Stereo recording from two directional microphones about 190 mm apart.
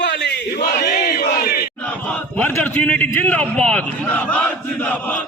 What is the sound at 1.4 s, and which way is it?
Battle cry, 55° left (ahead or behind).